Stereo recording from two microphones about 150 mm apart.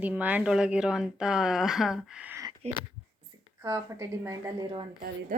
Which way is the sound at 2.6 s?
45° right (ahead or behind).